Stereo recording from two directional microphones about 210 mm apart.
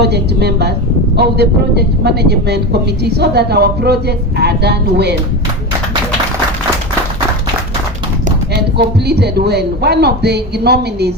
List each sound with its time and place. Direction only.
0.0 s speech: 50° right (ahead or behind)
9.0 s speech: 50° right (ahead or behind)